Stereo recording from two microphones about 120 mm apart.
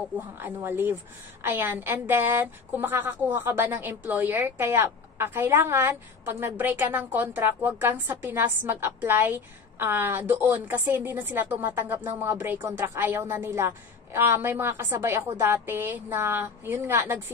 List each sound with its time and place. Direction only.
0.4 s a woman's voice: 20° right (ahead or behind)